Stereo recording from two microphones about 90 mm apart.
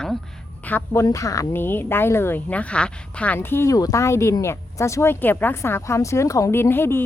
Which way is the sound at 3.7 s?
40° left (ahead or behind).